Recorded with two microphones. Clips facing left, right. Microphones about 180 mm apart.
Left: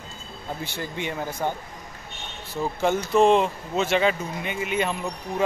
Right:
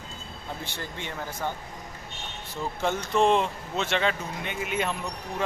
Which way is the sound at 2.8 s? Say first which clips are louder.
Left 4 dB; 5° left (ahead or behind).